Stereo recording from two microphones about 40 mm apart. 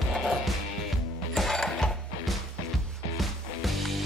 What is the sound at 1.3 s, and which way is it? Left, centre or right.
Music, centre.